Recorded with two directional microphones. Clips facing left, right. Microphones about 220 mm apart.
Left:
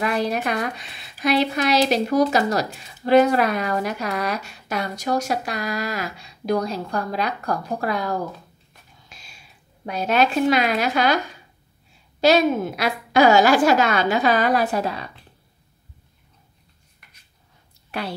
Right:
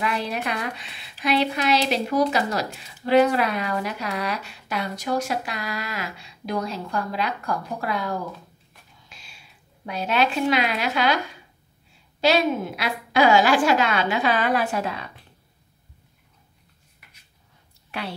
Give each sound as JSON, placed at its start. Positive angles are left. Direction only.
{"t": 0.0, "sound": "a woman's voice", "side_deg": 45}
{"t": 9.8, "sound": "a woman's voice", "side_deg": 45}
{"t": 12.2, "sound": "a woman's voice", "side_deg": 45}
{"t": 17.0, "sound": "a sound", "side_deg": -5}